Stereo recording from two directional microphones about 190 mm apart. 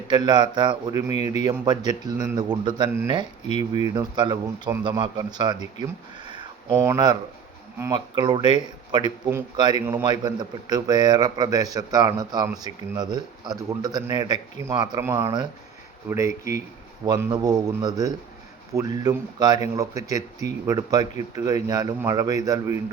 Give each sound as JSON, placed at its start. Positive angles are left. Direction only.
{"t": 0.1, "sound": "a man's voice", "side_deg": -25}